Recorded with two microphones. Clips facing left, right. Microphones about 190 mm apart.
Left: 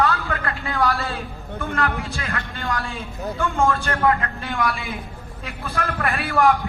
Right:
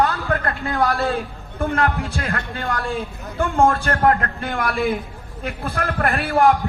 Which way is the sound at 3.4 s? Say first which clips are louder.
Right 4 dB; 35° right (ahead or behind).